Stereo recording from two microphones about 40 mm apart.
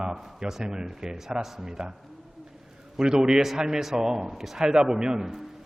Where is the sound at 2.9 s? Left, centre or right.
Centre.